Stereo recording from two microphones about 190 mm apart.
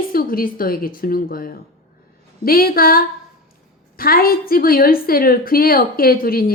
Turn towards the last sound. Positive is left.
turn(degrees=50)  # may be behind; listen again after turning